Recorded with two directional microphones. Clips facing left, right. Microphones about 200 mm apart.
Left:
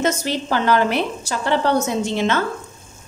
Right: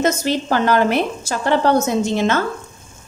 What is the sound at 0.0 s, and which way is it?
Speech, 45° right (ahead or behind).